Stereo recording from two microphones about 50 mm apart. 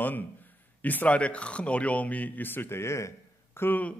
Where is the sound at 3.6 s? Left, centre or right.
Left.